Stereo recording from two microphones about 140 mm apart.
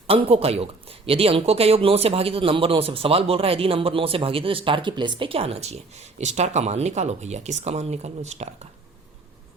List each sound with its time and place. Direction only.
0.1 s speech: 45° right (ahead or behind)